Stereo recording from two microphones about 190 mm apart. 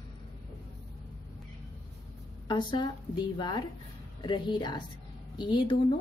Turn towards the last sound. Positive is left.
turn(degrees=25)  # may be behind; listen again after turning